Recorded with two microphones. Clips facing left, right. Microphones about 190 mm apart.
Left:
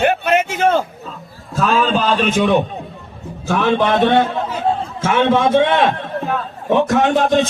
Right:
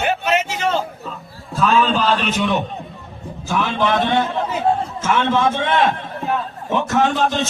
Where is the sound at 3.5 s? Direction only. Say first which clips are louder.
Left 4 dB; 65° left (ahead or behind).